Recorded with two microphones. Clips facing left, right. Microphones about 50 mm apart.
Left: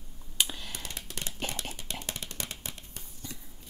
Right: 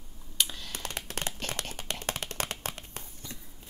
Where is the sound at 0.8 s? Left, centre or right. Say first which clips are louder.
Right 5 dB; right.